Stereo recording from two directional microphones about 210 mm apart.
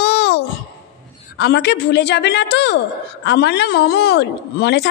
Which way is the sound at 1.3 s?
55° left (ahead or behind).